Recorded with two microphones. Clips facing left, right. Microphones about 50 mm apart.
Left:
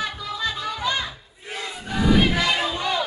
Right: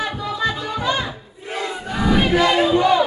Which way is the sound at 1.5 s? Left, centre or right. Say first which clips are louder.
Right 5 dB; centre.